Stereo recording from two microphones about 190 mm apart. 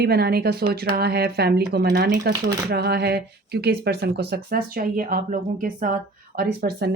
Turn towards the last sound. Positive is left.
turn(degrees=-55)  # may be behind; listen again after turning